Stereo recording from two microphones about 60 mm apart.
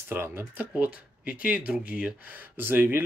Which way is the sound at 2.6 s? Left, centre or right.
Right.